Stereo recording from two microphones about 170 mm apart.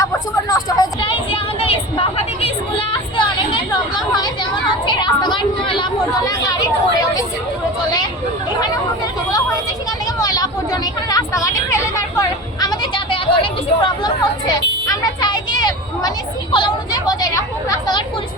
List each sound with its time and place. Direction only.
0.0 s vehicle: 20° left (ahead or behind)
4.9 s chatter: 25° left (ahead or behind)
10.2 s vehicle: 25° left (ahead or behind)